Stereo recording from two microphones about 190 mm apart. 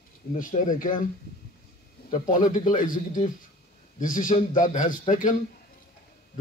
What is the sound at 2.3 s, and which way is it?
A man's voice, 40° left (ahead or behind).